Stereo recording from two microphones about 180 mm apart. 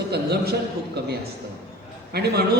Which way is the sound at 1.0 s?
65° right (ahead or behind).